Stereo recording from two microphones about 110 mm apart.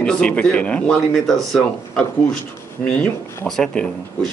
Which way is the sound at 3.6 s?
5° left (ahead or behind).